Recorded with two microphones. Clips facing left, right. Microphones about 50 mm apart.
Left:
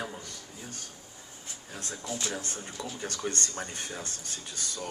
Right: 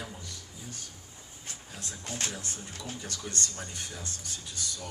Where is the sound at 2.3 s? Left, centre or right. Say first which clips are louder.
Left 4 dB; left.